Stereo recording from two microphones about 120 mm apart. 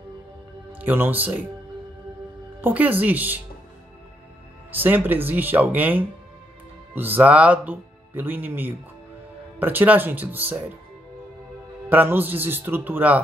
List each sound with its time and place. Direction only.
0.7 s speech: 15° right (ahead or behind)
2.6 s speech: 15° right (ahead or behind)
4.6 s speech: 15° right (ahead or behind)
11.9 s speech: 15° right (ahead or behind)